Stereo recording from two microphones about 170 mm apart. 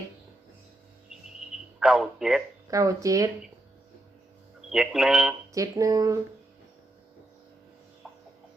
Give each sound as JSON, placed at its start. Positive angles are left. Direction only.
{"t": 1.8, "sound": "speech", "side_deg": 0}
{"t": 2.6, "sound": "speech", "side_deg": -20}
{"t": 4.7, "sound": "speech", "side_deg": -5}
{"t": 5.5, "sound": "speech", "side_deg": -20}
{"t": 8.0, "sound": "a sound", "side_deg": -5}